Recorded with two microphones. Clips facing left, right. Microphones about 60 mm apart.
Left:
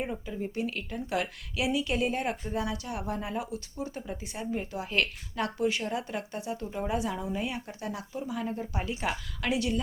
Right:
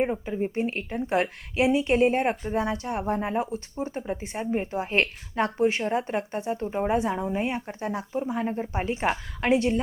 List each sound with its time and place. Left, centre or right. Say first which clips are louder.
0.0 s speech: right 8 dB; right